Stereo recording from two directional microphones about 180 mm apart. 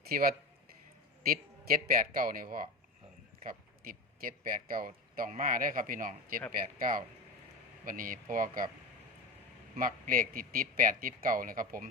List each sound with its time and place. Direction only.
0.1 s a man's voice: 55° right (ahead or behind)
9.7 s a man's voice: 50° right (ahead or behind)